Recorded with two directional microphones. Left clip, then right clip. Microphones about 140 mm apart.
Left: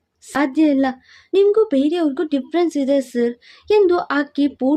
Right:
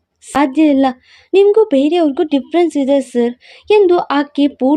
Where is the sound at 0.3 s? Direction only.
20° right (ahead or behind).